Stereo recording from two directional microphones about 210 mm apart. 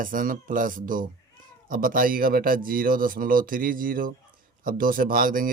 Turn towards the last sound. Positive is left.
turn(degrees=-40)  # may be behind; listen again after turning